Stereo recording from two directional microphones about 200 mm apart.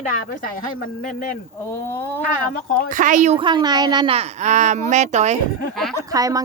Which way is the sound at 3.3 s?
25° right (ahead or behind).